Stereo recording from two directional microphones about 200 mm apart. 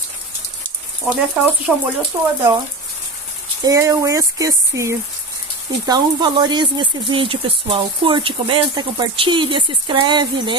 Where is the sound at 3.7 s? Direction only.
15° right (ahead or behind).